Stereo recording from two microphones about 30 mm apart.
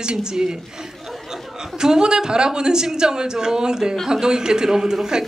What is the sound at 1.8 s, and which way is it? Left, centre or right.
A woman's voice, right.